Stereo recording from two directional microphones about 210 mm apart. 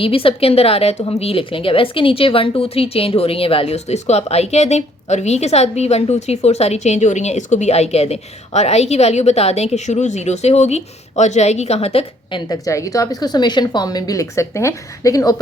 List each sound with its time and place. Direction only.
0.0 s a woman's voice: 25° left (ahead or behind)